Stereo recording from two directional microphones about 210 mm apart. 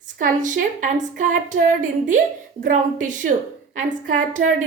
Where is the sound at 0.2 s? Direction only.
35° right (ahead or behind).